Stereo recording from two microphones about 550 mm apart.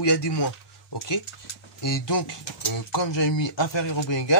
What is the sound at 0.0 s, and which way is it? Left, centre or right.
Speech, left.